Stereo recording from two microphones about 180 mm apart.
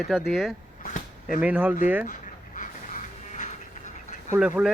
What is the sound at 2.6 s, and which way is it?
Music, 45° left (ahead or behind).